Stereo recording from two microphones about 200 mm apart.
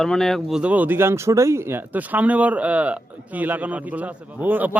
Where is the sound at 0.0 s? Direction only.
Centre (ahead or behind).